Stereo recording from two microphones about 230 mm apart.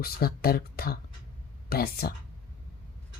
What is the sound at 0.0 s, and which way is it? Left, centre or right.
Speech, left.